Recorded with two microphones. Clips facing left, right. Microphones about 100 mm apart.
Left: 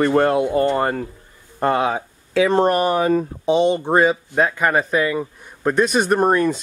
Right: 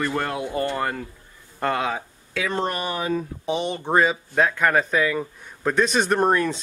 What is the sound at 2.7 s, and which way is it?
Speech, 50° left (ahead or behind).